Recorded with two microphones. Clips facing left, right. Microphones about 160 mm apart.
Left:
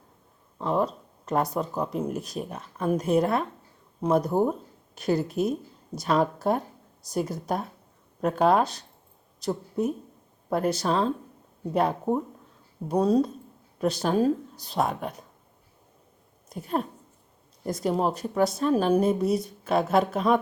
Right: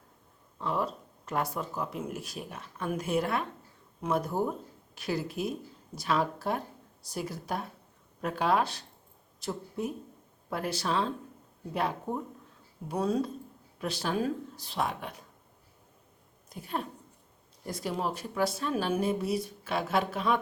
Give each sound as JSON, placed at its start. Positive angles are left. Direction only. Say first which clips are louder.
{"t": 0.6, "sound": "speech", "louder": "left 6 dB", "side_deg": 35}
{"t": 17.7, "sound": "speech", "louder": "left 7 dB", "side_deg": 40}